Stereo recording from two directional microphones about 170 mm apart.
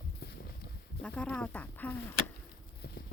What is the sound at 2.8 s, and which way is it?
Clip-clop, 70° left (ahead or behind).